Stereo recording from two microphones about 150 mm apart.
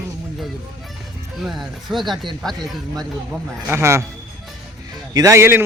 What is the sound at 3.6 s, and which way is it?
Speech, 15° right (ahead or behind).